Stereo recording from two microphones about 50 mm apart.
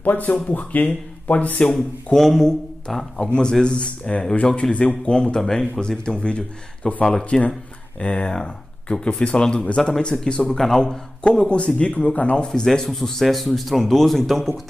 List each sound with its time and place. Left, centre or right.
0.0 s speech: left
2.1 s speech: centre
3.6 s speech: centre
12.6 s speech: centre